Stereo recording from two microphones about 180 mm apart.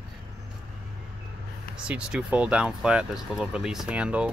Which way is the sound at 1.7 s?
5° right (ahead or behind).